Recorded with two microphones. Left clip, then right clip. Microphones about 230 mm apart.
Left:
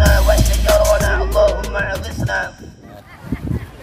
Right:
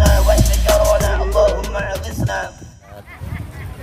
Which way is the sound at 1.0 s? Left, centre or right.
Centre.